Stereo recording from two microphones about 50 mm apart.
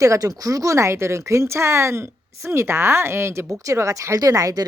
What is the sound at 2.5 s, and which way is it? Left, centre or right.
Speech, right.